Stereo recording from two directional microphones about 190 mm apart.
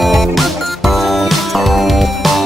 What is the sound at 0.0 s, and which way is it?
Music, centre (ahead or behind).